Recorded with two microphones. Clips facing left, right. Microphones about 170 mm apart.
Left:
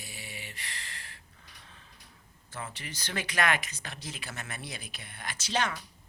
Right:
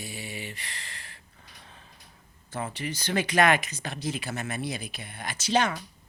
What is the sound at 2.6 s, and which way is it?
Speech, 15° right (ahead or behind).